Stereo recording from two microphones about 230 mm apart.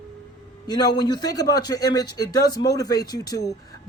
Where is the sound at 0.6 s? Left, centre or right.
Centre.